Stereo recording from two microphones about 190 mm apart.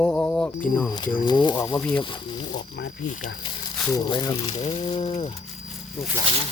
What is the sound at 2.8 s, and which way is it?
Speech, 50° left (ahead or behind).